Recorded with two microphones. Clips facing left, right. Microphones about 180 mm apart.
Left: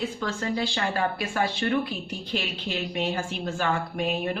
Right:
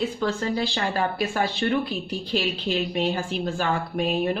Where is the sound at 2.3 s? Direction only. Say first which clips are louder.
Right 6 dB; 35° right (ahead or behind).